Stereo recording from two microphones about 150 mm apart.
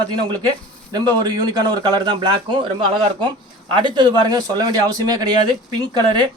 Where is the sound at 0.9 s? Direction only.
25° right (ahead or behind).